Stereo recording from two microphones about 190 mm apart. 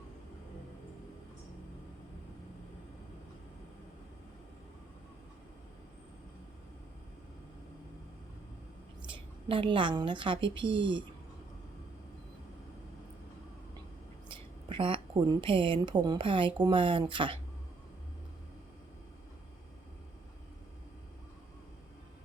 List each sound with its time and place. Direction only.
9.0 s a woman's voice: 25° right (ahead or behind)
14.3 s a woman's voice: 25° right (ahead or behind)